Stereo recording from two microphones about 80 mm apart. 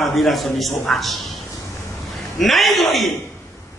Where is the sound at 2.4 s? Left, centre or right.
Centre.